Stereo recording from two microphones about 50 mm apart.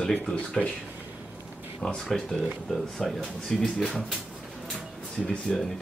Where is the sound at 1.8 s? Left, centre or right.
Centre.